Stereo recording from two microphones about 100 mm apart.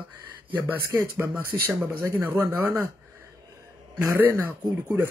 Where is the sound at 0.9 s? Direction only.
20° right (ahead or behind).